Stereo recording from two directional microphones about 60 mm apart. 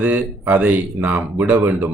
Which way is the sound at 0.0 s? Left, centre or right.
Right.